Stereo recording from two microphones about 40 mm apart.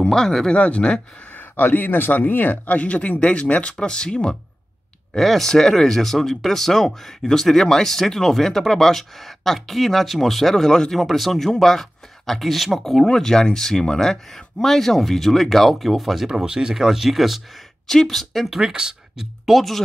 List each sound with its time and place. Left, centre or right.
0.0 s speech: centre
0.5 s speech: left
1.3 s speech: left
3.7 s speech: left
5.1 s speech: centre
13.1 s speech: centre
16.3 s speech: centre
17.8 s speech: centre
18.6 s speech: centre
19.4 s speech: centre